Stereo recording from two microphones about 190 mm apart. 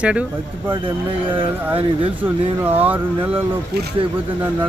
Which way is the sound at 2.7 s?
10° right (ahead or behind).